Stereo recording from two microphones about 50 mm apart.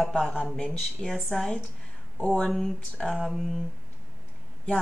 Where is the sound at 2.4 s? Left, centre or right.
Centre.